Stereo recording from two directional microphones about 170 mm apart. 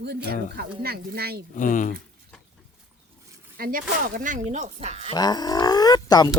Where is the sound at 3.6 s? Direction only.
55° right (ahead or behind); by 5.1 s 40° right (ahead or behind).